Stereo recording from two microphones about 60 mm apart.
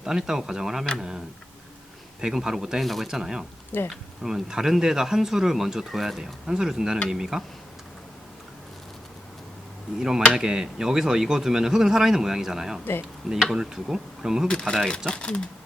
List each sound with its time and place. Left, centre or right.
0.0 s speech: centre
2.2 s speech: centre
10.0 s speech: centre
12.8 s speech: left
13.3 s speech: centre
14.6 s speech: centre